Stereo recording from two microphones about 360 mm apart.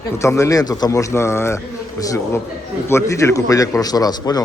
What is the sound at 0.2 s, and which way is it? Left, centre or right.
A man's voice, centre.